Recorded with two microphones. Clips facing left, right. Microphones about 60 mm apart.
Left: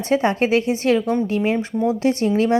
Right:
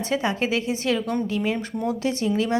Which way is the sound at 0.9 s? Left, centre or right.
Left.